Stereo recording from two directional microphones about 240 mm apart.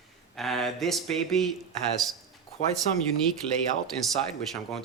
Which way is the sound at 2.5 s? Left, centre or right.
Left.